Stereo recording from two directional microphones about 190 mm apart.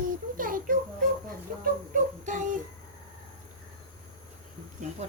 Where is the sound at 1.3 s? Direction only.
45° right (ahead or behind).